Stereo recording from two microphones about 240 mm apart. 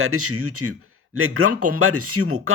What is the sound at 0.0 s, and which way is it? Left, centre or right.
Speech, right.